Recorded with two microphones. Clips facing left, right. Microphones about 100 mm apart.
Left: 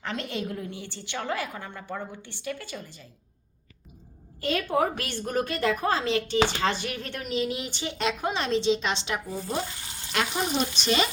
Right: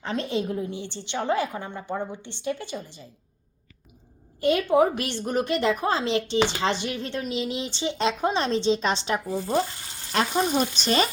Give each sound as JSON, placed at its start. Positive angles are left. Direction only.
{"t": 0.0, "sound": "a woman's voice", "side_deg": -20}
{"t": 4.4, "sound": "a woman's voice", "side_deg": -20}